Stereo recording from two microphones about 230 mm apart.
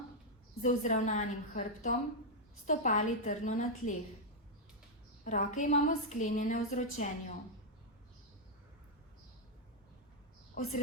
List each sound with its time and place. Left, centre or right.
0.6 s a woman's voice: left
5.2 s a woman's voice: left
10.6 s a woman's voice: left